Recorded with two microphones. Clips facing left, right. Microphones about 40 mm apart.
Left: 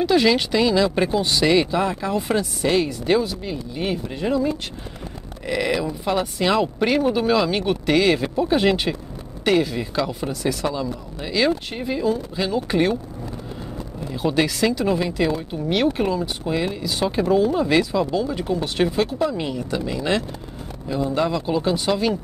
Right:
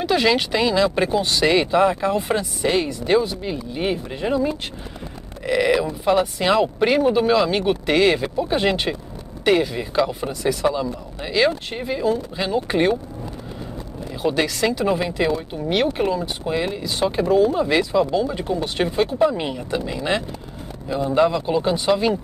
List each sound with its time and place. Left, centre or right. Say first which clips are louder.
0.0 s speech: left 1 dB; centre
14.1 s speech: even; centre